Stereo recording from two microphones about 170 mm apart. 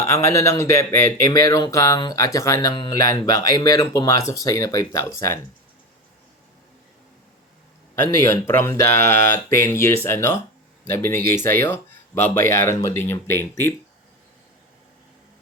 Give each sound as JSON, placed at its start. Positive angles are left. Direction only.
{"t": 0.0, "sound": "speech", "side_deg": 15}
{"t": 8.0, "sound": "speech", "side_deg": 15}